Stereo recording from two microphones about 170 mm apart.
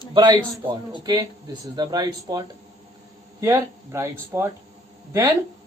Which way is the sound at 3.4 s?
15° right (ahead or behind).